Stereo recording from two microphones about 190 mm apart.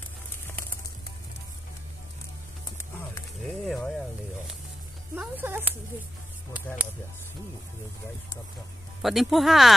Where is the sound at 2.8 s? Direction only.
15° left (ahead or behind).